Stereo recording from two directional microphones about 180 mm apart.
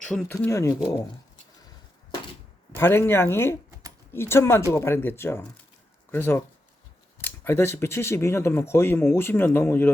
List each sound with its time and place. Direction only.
0.0 s speech: 5° left (ahead or behind)
0.3 s speech: 15° left (ahead or behind)
2.7 s speech: 15° left (ahead or behind)